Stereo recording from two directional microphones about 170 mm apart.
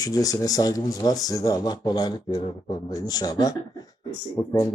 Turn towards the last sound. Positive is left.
turn(degrees=20)  # may be behind; listen again after turning